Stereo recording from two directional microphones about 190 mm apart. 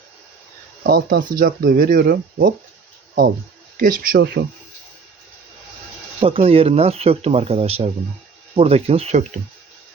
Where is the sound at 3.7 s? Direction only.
45° right (ahead or behind).